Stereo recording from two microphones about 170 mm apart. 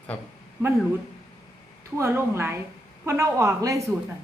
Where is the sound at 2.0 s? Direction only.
15° right (ahead or behind).